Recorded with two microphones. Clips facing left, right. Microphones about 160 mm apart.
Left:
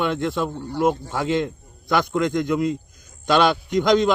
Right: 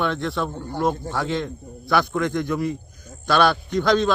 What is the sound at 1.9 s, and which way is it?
A man's voice, 15° left (ahead or behind).